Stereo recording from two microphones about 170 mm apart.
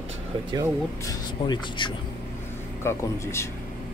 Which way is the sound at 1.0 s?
25° left (ahead or behind).